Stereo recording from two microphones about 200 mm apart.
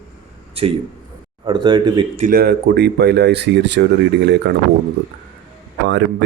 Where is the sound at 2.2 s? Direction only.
45° right (ahead or behind).